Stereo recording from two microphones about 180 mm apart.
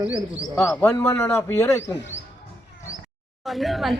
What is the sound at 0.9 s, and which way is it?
Speech, 15° left (ahead or behind).